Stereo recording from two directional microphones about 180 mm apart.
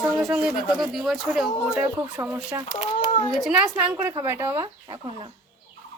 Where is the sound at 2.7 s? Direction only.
35° left (ahead or behind).